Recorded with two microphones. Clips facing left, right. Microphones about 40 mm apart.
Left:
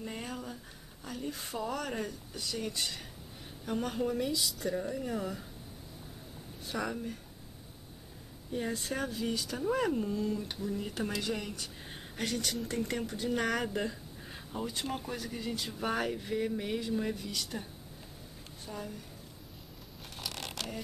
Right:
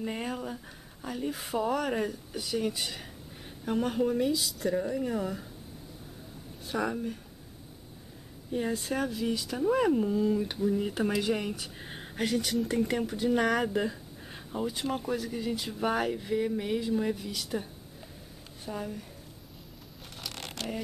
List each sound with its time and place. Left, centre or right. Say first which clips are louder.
0.0 s speech: right 6 dB; right
4.4 s a woman's voice: right 4 dB; centre
6.7 s speech: right 5 dB; centre
8.5 s speech: right 4 dB; centre
18.7 s speech: right 5 dB; centre
20.2 s zipper: right 1 dB; centre